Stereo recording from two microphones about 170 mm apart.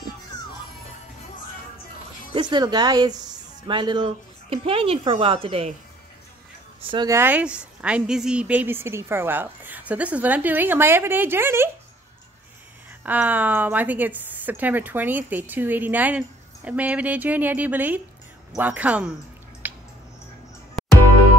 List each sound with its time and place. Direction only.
2.3 s speech: 25° right (ahead or behind)
6.9 s speech: 25° right (ahead or behind)
7.2 s a woman's voice: 10° right (ahead or behind)
13.0 s a woman's voice: 10° right (ahead or behind)
19.6 s a sound: 10° right (ahead or behind)
20.8 s music: centre (ahead or behind)